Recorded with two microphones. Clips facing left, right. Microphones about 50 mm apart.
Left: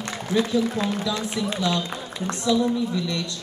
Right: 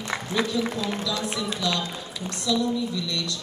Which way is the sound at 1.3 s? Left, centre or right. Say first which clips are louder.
Left 3 dB; left.